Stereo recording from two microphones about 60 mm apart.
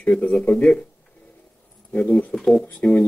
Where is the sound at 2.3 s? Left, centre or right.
Centre.